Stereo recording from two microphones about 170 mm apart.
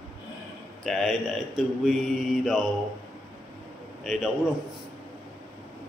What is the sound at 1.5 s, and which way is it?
Mantra, centre (ahead or behind).